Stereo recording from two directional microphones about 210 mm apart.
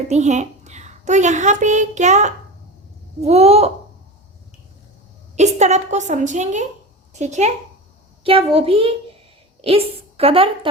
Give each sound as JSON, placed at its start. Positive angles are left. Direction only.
{"t": 0.1, "sound": "a child's voice", "side_deg": -35}
{"t": 5.4, "sound": "a woman's voice", "side_deg": -35}